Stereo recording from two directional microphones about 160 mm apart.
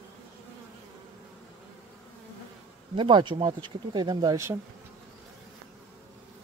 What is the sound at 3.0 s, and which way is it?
Speech, 30° right (ahead or behind).